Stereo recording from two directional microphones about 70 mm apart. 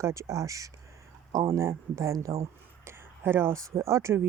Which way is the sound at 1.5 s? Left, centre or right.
Right.